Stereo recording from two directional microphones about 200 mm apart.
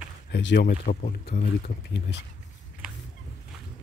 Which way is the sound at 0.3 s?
60° left (ahead or behind).